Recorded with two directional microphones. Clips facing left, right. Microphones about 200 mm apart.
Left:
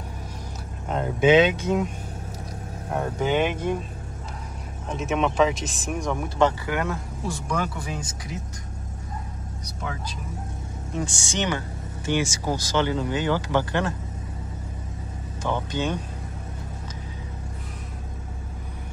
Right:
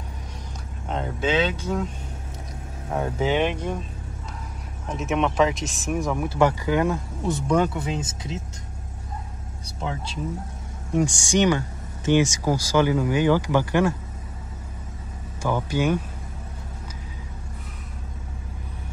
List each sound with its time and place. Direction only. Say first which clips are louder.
0.8 s speech: left 2 dB; 5° left (ahead or behind)
1.2 s speech: left 7 dB; 20° left (ahead or behind)
2.9 s speech: right 1 dB; centre (ahead or behind)
4.8 s speech: right 1 dB; centre (ahead or behind); by 8.4 s 25° right (ahead or behind)
10.9 s speech: right 8 dB; 15° right (ahead or behind)
15.7 s speech: right 7 dB; 10° right (ahead or behind)